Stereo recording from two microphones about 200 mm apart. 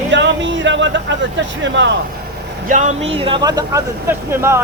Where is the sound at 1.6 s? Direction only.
65° right (ahead or behind).